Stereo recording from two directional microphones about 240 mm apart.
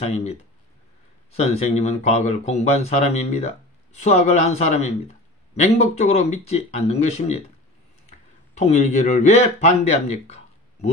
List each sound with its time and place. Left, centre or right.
0.1 s speech: left
8.5 s speech: left
10.2 s a sound: left